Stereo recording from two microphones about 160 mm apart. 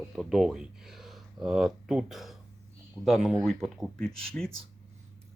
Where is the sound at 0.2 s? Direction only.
5° right (ahead or behind).